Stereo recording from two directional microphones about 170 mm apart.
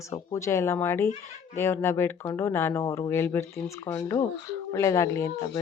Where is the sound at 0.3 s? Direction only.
15° left (ahead or behind).